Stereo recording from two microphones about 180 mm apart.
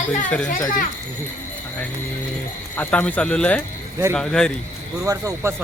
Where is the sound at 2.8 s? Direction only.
10° left (ahead or behind).